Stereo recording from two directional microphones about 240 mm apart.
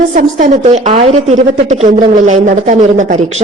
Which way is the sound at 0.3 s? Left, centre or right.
Right.